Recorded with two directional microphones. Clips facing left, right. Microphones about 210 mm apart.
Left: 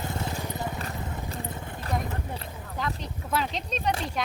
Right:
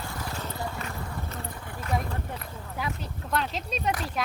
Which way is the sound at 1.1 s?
15° left (ahead or behind).